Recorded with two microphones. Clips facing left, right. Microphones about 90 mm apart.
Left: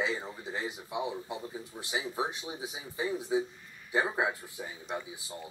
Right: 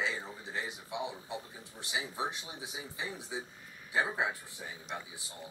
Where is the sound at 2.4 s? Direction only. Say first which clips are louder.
Left 4 dB; 25° left (ahead or behind).